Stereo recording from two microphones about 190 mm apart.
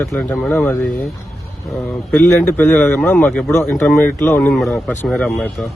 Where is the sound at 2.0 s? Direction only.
5° left (ahead or behind).